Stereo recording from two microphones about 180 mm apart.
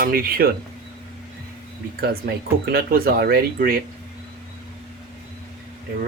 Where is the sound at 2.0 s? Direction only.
60° right (ahead or behind).